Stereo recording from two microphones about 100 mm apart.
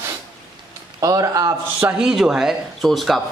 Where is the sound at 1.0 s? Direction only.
35° right (ahead or behind).